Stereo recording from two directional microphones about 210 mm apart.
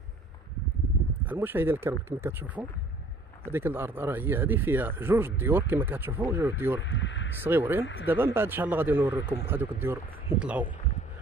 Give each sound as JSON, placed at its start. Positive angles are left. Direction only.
{"t": 1.2, "sound": "speech", "side_deg": -10}
{"t": 6.8, "sound": "speech", "side_deg": 60}
{"t": 7.4, "sound": "speech", "side_deg": -10}
{"t": 7.8, "sound": "speech", "side_deg": 60}
{"t": 8.1, "sound": "speech", "side_deg": -10}